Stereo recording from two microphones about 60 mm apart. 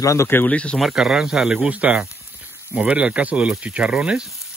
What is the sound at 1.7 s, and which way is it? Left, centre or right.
Speech, right.